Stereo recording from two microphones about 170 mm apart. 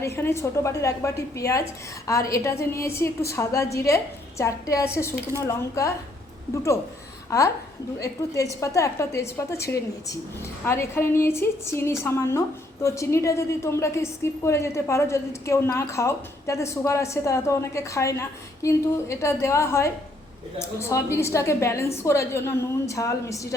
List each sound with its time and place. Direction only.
0.0 s a woman's voice: 15° left (ahead or behind)
7.3 s a woman's voice: 20° left (ahead or behind)